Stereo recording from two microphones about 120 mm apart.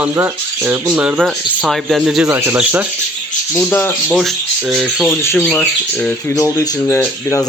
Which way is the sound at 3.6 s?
15° left (ahead or behind).